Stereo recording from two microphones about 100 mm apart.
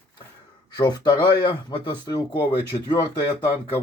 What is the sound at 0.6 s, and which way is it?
Speech, 45° left (ahead or behind).